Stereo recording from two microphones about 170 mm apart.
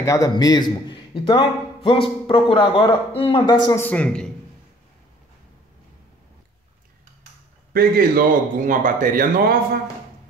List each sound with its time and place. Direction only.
0.0 s a man's voice: 20° left (ahead or behind)
3.8 s a man's voice: 5° left (ahead or behind)
7.7 s speech: 60° right (ahead or behind)